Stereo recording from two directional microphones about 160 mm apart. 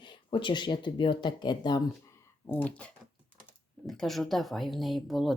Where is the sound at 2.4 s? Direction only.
10° left (ahead or behind).